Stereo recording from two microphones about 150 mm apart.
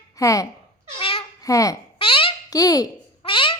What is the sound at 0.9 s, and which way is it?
Babbling, 35° left (ahead or behind).